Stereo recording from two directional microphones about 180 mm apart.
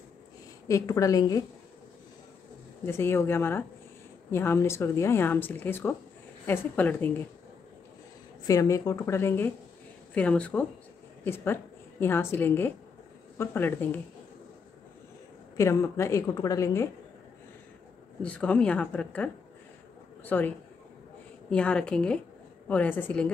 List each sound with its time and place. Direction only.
0.7 s a woman's voice: 15° left (ahead or behind)
2.8 s speech: 15° left (ahead or behind)
8.5 s a woman's voice: 20° left (ahead or behind)
15.5 s speech: 15° left (ahead or behind)
18.2 s a woman's voice: 5° left (ahead or behind)